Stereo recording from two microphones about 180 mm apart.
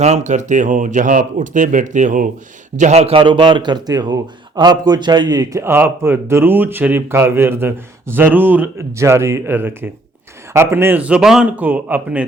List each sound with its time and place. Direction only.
0.0 s a man's voice: 40° right (ahead or behind); by 12.2 s 10° right (ahead or behind)